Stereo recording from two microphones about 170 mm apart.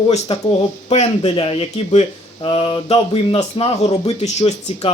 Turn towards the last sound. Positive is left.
turn(degrees=40)  # may be behind; listen again after turning